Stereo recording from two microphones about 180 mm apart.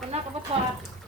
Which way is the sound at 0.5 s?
35° right (ahead or behind).